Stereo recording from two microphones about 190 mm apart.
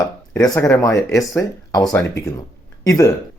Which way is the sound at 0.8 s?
15° left (ahead or behind).